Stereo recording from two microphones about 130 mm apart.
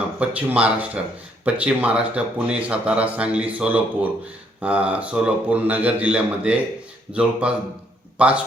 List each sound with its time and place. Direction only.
0.2 s a man's voice: 10° right (ahead or behind)